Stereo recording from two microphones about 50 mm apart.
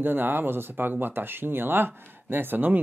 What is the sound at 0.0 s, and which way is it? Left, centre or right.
Speech, right.